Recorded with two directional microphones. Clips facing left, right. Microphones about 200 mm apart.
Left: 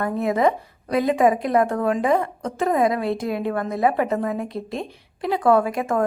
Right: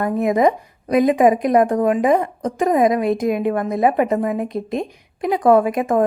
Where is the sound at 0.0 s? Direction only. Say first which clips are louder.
Right 4 dB; 15° right (ahead or behind).